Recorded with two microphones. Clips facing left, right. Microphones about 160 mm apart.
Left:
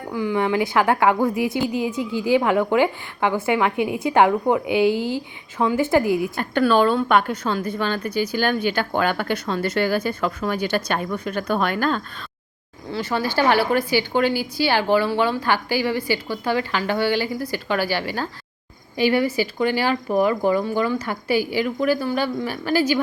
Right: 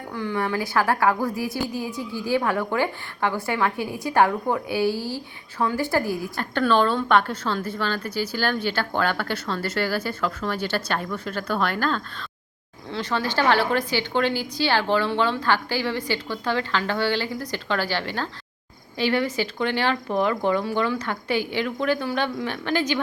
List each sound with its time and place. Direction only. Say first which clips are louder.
0.1 s a woman's voice: left 5 dB; 10° left (ahead or behind)